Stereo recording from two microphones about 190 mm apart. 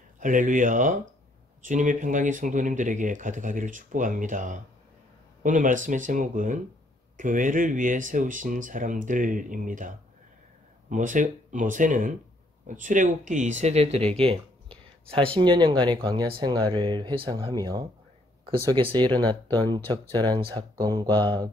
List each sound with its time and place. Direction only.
0.2 s speech: 45° right (ahead or behind); by 21.5 s 25° right (ahead or behind)